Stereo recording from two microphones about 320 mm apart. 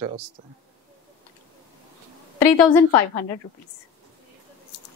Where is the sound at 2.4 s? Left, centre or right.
Centre.